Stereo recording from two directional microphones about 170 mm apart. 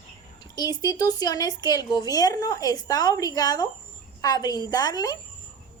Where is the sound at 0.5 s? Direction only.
25° left (ahead or behind).